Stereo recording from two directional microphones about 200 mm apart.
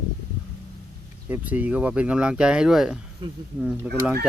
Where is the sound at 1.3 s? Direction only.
10° right (ahead or behind).